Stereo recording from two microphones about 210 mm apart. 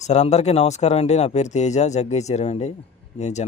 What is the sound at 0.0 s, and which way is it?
Speech, 35° left (ahead or behind).